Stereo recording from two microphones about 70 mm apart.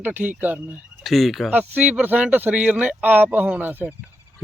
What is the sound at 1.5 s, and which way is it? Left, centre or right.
Speech, right.